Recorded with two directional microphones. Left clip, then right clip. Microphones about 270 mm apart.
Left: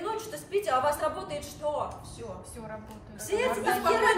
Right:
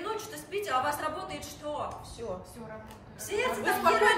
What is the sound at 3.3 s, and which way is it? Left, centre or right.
Speech, centre.